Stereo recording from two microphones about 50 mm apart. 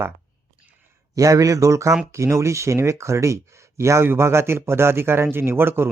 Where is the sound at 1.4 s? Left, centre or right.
Right.